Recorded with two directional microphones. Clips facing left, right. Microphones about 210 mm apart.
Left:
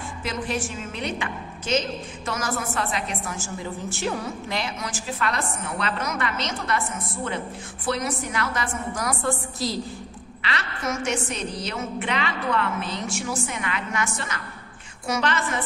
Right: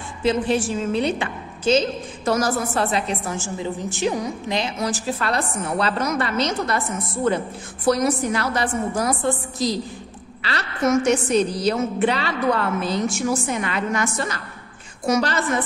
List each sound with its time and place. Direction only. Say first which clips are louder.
0.2 s a woman's voice: right 9 dB; 30° right (ahead or behind)
4.7 s a woman's voice: right 6 dB; 35° right (ahead or behind); by 9.8 s 20° right (ahead or behind)
10.4 s a woman's voice: right 7 dB; 35° right (ahead or behind)